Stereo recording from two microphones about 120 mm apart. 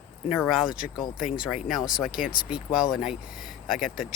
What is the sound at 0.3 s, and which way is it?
Speech, 5° right (ahead or behind).